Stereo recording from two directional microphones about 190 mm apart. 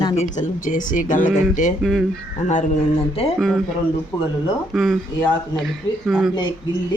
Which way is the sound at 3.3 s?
Centre (ahead or behind).